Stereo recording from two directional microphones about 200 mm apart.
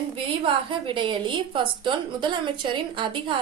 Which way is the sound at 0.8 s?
25° right (ahead or behind).